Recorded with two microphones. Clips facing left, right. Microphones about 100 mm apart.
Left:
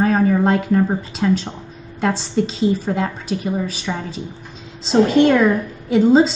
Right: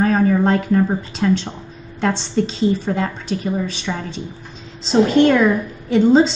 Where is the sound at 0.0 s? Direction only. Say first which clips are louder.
Even; 5° left (ahead or behind).